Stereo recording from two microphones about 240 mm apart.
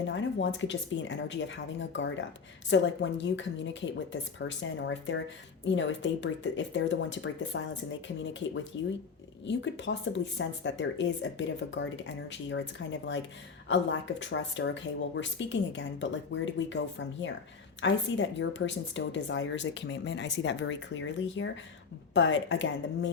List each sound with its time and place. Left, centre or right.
0.1 s speech: left